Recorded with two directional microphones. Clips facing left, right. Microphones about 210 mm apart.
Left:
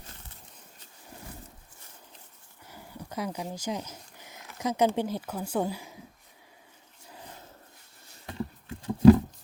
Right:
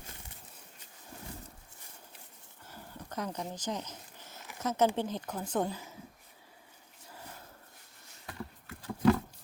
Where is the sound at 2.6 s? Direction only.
10° left (ahead or behind).